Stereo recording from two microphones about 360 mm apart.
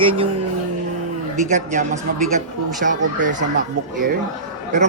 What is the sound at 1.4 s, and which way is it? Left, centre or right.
Speech, centre.